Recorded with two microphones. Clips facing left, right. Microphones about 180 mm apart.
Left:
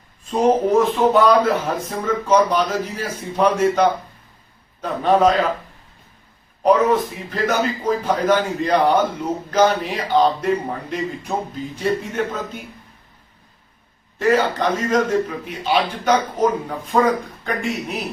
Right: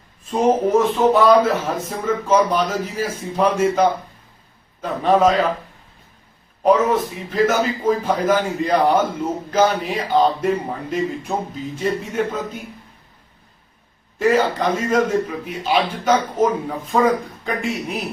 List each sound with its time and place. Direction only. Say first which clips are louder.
0.3 s a man's voice: even; 5° right (ahead or behind)
6.6 s a man's voice: even; 5° right (ahead or behind)
14.2 s a man's voice: even; 5° right (ahead or behind)